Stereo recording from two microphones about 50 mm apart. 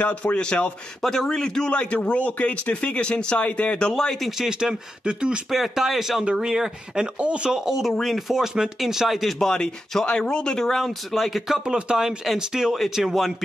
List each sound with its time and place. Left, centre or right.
0.0 s speech: left
1.0 s speech: centre; by 3.8 s left
3.9 s speech: centre
4.4 s speech: centre
5.5 s speech: centre
7.2 s speech: right
7.6 s speech: centre
8.3 s speech: centre
9.4 s speech: centre